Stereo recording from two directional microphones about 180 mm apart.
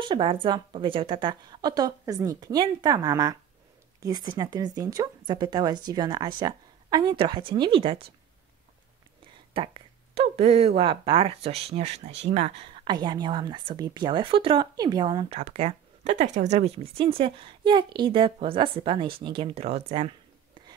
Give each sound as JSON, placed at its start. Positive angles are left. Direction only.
{"t": 0.0, "sound": "speech", "side_deg": -25}
{"t": 9.5, "sound": "speech", "side_deg": -30}
{"t": 12.8, "sound": "speech", "side_deg": -25}